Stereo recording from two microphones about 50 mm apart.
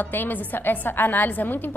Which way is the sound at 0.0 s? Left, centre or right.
Left.